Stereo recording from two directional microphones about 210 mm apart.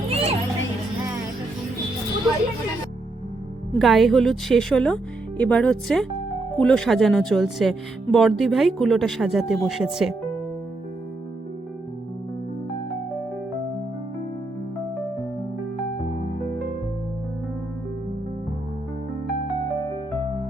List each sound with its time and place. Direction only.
0.1 s music: 30° right (ahead or behind)
3.8 s speech: centre (ahead or behind)